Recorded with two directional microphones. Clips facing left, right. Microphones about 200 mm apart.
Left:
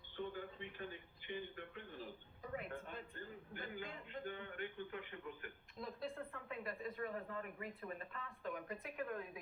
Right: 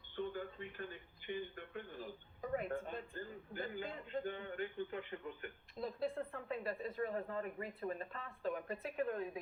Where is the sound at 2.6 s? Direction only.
40° right (ahead or behind).